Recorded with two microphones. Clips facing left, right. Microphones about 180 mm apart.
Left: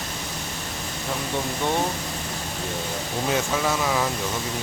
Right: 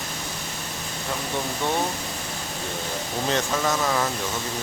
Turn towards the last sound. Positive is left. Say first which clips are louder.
# even
turn(degrees=5)  # may be behind; listen again after turning